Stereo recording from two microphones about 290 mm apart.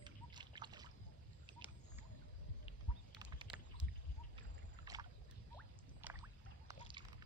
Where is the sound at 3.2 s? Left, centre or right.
Centre.